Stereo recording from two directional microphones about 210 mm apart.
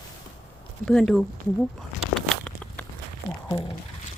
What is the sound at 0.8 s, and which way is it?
Speech, 5° left (ahead or behind).